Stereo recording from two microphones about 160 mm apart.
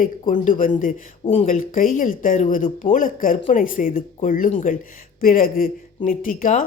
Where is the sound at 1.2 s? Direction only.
45° left (ahead or behind).